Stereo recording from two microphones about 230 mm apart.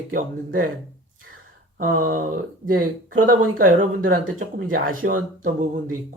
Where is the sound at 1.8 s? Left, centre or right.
Right.